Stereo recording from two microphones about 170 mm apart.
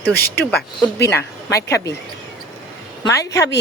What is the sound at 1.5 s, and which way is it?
Speech, 20° left (ahead or behind).